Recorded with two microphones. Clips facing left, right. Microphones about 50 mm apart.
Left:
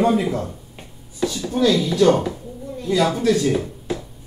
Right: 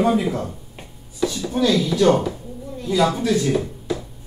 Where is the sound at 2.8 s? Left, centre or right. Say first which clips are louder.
Even; centre.